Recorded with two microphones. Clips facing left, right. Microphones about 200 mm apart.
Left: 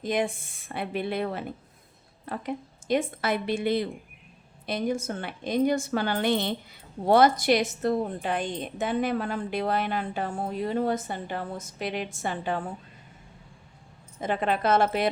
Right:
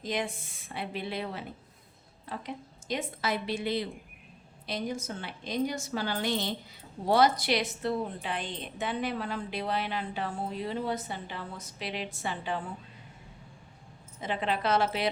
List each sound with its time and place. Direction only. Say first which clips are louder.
0.0 s a woman's voice: left 6 dB; 55° left (ahead or behind)
14.2 s a woman's voice: left 5 dB; 50° left (ahead or behind)